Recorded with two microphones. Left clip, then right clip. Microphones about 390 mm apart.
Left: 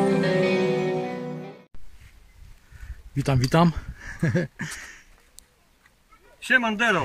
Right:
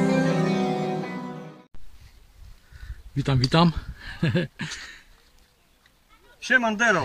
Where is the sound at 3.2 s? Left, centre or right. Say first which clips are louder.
Even; centre.